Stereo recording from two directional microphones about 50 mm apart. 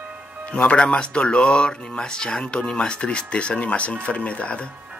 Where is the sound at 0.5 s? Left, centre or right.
Centre.